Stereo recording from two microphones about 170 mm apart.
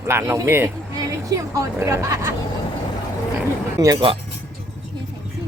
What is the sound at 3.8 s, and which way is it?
Speech, 20° right (ahead or behind).